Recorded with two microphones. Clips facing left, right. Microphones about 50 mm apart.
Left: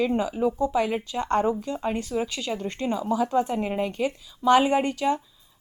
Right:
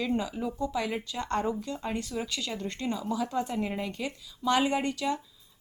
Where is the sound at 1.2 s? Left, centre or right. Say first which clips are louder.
Left 7 dB; left.